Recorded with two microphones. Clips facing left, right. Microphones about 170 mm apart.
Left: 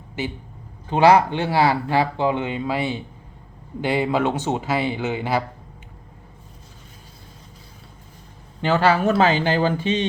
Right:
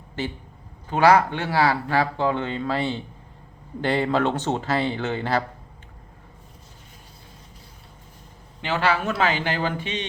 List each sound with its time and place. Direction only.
0.9 s speech: 25° left (ahead or behind); by 5.4 s 10° left (ahead or behind)
8.6 s speech: 40° left (ahead or behind)